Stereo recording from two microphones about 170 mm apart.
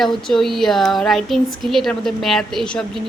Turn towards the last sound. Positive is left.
turn(degrees=5)  # may be behind; listen again after turning